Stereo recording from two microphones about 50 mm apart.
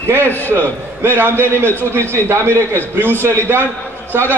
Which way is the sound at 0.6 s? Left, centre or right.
Right.